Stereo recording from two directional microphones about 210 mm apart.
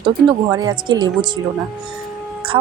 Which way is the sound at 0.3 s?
20° right (ahead or behind).